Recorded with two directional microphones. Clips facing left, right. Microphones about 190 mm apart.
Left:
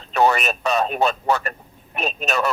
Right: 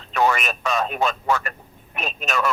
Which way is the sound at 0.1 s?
35° left (ahead or behind).